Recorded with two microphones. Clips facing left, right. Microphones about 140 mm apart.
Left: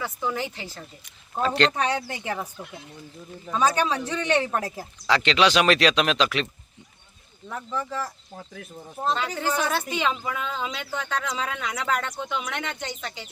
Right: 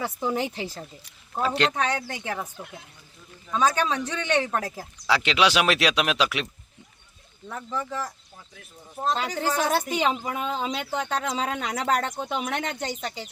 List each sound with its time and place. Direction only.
0.0 s speech: 30° right (ahead or behind)
1.4 s speech: 10° right (ahead or behind)
1.7 s speech: centre (ahead or behind)
3.5 s speech: 5° left (ahead or behind)
9.3 s speech: 10° right (ahead or behind)
10.2 s speech: 35° right (ahead or behind)